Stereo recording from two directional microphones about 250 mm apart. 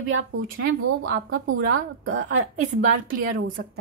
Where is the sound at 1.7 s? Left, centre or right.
Right.